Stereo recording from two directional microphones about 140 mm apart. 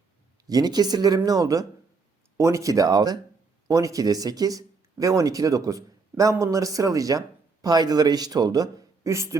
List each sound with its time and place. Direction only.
0.4 s speech: 30° right (ahead or behind)